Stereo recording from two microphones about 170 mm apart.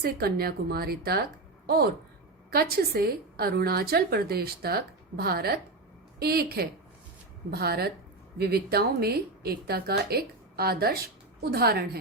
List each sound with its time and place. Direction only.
0.0 s a woman's voice: 65° right (ahead or behind)